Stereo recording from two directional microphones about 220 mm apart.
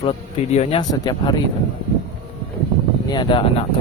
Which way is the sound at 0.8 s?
20° left (ahead or behind).